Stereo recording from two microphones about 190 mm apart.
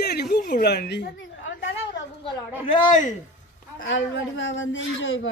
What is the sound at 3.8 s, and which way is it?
A man's voice, 85° left.